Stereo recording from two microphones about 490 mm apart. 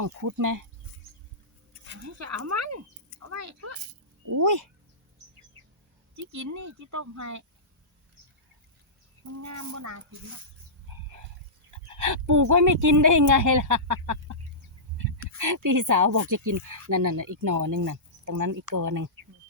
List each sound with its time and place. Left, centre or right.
0.0 s speech: right
1.9 s speech: right
6.1 s speech: right
9.4 s speech: right
11.9 s speech: right